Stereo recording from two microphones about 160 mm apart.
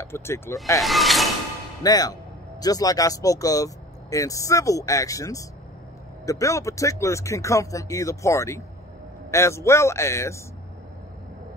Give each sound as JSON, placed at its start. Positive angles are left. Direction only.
{"t": 0.0, "sound": "a man's voice", "side_deg": 15}
{"t": 0.7, "sound": "speech", "side_deg": 0}
{"t": 1.8, "sound": "a man's voice", "side_deg": 25}